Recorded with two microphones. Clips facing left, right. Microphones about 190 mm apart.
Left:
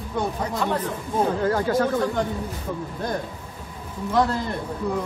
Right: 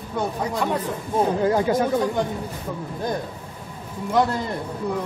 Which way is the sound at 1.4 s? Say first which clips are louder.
Right 2 dB; 15° right (ahead or behind).